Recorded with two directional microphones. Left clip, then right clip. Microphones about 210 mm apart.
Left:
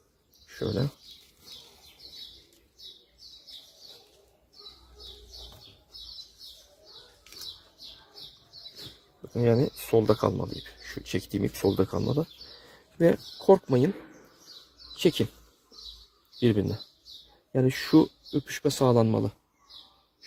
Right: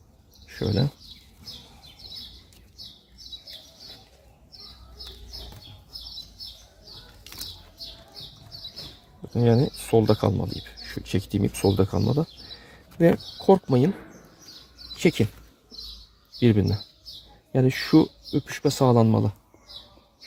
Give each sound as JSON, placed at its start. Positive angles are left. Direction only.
{"t": 0.6, "sound": "speech", "side_deg": 0}
{"t": 9.3, "sound": "speech", "side_deg": 5}
{"t": 16.4, "sound": "speech", "side_deg": 5}